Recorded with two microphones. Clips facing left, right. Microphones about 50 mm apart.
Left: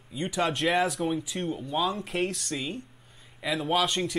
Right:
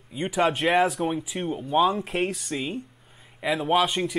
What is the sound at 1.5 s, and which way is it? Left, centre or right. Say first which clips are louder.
Speech: right 8 dB; right.